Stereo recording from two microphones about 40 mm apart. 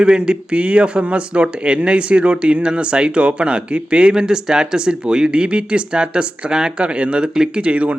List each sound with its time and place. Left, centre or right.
0.0 s speech: right